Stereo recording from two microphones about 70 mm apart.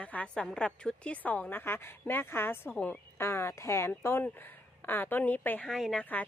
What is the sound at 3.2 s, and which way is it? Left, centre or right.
Speech, left.